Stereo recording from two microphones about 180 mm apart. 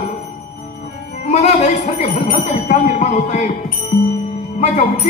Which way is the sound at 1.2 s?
40° left (ahead or behind).